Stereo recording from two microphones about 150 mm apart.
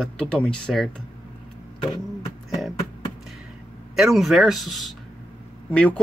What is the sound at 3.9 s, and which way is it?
Speech, centre (ahead or behind).